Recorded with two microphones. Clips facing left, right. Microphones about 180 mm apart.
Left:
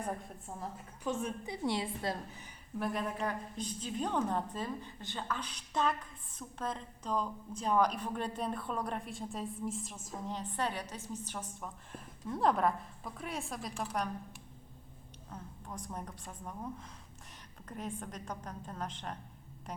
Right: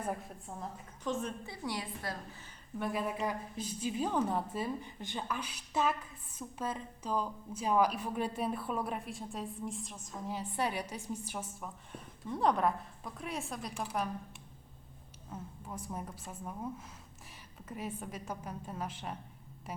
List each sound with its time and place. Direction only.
0.0 s a woman's voice: 5° right (ahead or behind)
1.5 s a woman's voice: 25° left (ahead or behind)
2.7 s a woman's voice: centre (ahead or behind)
15.3 s a woman's voice: 5° right (ahead or behind)